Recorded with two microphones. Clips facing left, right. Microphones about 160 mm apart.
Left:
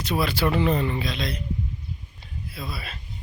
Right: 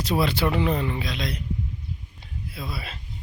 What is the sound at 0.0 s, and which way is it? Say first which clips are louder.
Speech: right 2 dB; 30° right (ahead or behind).